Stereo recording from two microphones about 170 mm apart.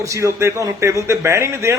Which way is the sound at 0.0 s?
20° right (ahead or behind).